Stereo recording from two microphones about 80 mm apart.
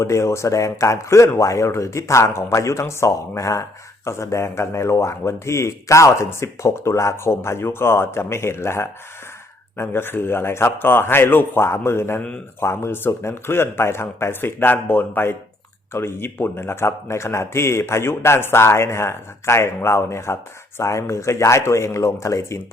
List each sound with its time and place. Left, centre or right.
0.0 s speech: left